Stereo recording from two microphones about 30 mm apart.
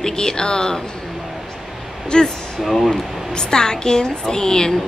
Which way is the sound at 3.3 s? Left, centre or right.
Left.